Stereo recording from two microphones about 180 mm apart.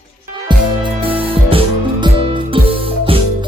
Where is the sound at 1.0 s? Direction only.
30° right (ahead or behind).